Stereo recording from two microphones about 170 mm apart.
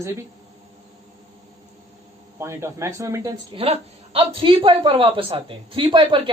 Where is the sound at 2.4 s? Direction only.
15° right (ahead or behind).